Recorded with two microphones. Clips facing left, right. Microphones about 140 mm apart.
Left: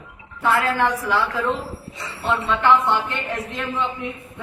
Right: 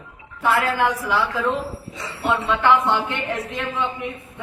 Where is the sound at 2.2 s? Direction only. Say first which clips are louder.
Right 1 dB; 15° right (ahead or behind).